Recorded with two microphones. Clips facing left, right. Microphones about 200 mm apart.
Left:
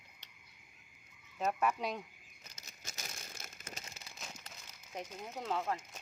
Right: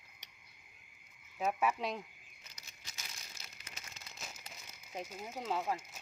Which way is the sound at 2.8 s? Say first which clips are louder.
Left 5 dB; 45° left (ahead or behind).